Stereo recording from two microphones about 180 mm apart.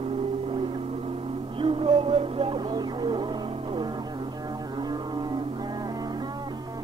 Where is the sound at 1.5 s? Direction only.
30° right (ahead or behind).